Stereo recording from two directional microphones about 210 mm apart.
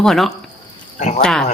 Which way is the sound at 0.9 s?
35° left (ahead or behind).